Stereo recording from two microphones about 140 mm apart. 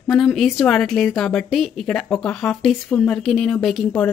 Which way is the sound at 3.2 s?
5° left (ahead or behind).